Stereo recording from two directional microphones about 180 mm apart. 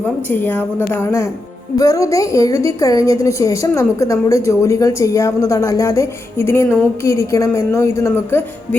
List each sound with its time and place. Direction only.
0.3 s a woman's voice: 10° left (ahead or behind)